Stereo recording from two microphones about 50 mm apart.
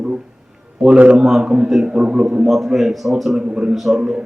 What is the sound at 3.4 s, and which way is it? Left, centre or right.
Speech, centre.